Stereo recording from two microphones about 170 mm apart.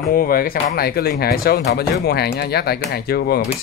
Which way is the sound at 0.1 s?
60° left (ahead or behind).